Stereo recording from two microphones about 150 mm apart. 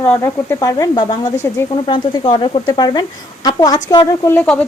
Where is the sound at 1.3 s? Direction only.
15° left (ahead or behind).